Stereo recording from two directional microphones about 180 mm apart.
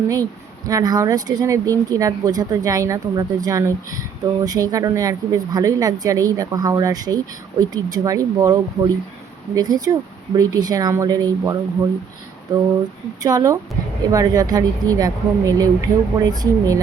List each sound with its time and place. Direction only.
0.7 s speech: 20° right (ahead or behind)
13.2 s speech: 20° right (ahead or behind)